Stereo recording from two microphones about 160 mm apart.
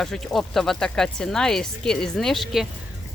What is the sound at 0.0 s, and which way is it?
Speech, 5° left (ahead or behind).